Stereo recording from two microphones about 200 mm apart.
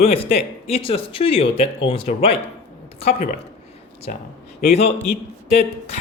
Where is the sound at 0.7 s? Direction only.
30° left (ahead or behind).